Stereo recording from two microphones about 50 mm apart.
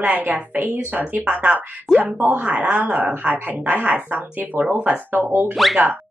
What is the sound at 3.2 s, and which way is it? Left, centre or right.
A woman's voice, right.